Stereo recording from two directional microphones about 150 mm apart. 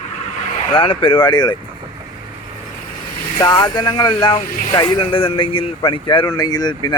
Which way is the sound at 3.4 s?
25° left (ahead or behind).